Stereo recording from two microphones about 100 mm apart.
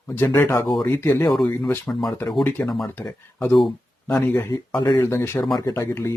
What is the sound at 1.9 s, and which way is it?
Speech, centre (ahead or behind).